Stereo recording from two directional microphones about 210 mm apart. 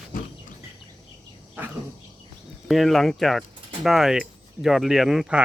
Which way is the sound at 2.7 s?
Centre (ahead or behind).